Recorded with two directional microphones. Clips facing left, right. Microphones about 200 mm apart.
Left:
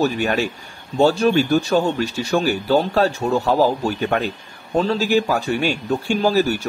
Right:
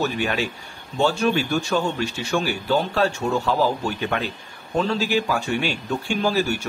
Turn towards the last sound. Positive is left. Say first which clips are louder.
# left 4 dB
turn(degrees=35)  # may be behind; listen again after turning